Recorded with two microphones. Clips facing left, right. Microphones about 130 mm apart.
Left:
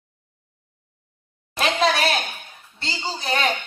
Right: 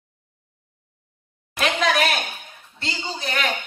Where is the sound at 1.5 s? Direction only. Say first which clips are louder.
Left 1 dB; 30° left (ahead or behind).